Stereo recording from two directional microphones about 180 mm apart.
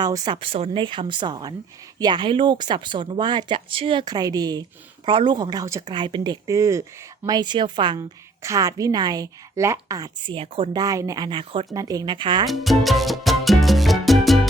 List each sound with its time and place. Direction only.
0.0 s speech: 25° right (ahead or behind)
10.3 s speech: 30° right (ahead or behind)
12.5 s music: centre (ahead or behind)